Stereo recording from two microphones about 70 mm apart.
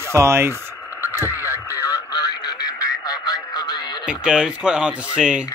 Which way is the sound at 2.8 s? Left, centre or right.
Left.